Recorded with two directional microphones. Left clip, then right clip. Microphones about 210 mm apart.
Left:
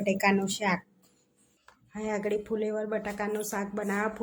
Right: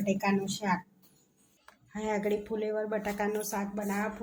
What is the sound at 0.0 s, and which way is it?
Speech, 30° left (ahead or behind).